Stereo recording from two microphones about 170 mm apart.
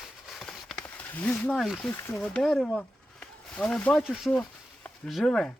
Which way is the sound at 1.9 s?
15° left (ahead or behind).